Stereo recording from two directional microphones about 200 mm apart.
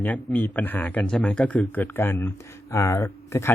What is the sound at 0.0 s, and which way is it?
Speech, 10° left (ahead or behind).